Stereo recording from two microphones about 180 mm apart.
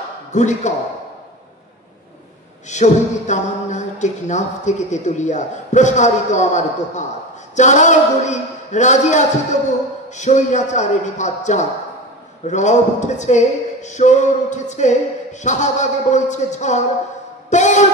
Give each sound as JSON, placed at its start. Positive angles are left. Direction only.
{"t": 0.3, "sound": "speech", "side_deg": 40}
{"t": 2.7, "sound": "speech", "side_deg": 40}